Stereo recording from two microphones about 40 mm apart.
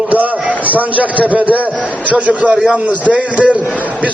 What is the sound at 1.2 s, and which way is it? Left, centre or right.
A man's voice, right.